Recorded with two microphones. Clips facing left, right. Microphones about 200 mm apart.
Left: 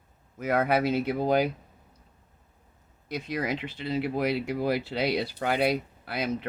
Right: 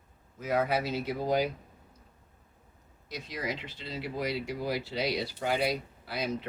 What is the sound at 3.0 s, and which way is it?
Speech, 60° left (ahead or behind).